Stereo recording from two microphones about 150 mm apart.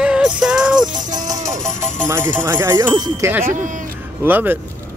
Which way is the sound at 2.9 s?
25° right (ahead or behind).